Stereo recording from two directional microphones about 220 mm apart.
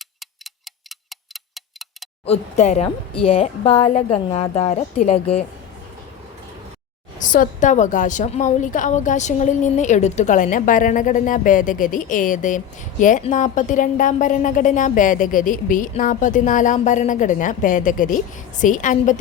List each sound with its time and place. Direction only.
2.2 s a woman's voice: 30° left (ahead or behind)
7.2 s a woman's voice: 35° left (ahead or behind)